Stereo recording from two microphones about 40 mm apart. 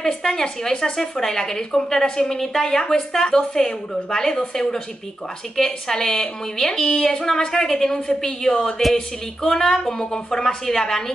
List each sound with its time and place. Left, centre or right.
0.0 s a woman's voice: centre
5.9 s a woman's voice: centre